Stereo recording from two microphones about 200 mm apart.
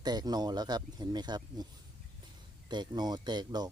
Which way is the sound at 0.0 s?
20° right (ahead or behind).